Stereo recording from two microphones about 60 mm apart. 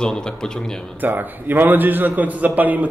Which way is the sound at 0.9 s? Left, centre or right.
Right.